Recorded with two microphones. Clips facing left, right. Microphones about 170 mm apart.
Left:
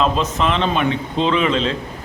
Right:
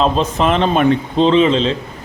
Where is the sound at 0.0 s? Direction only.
35° right (ahead or behind).